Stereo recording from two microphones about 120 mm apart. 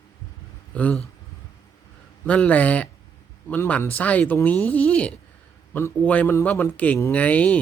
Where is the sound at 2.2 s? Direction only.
10° left (ahead or behind).